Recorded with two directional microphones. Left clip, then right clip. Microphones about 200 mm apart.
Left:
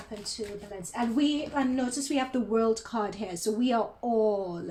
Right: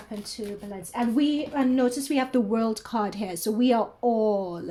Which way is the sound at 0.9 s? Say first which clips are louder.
Right 3 dB; 40° right (ahead or behind).